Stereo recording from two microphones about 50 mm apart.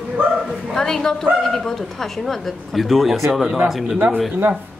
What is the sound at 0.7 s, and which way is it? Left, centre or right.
A woman's voice, centre.